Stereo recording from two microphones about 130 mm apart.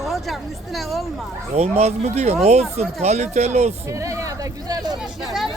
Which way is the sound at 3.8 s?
25° right (ahead or behind).